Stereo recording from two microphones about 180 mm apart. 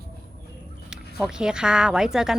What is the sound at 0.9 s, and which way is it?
Speech, 5° right (ahead or behind).